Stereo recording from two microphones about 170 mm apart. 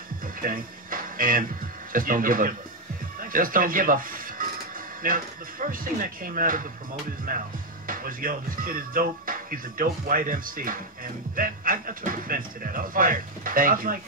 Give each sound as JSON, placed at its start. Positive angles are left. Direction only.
{"t": 0.4, "sound": "speech", "side_deg": -55}
{"t": 3.2, "sound": "music", "side_deg": -55}
{"t": 5.0, "sound": "speech", "side_deg": -55}